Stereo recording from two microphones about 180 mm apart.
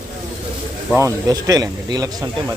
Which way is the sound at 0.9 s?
15° right (ahead or behind).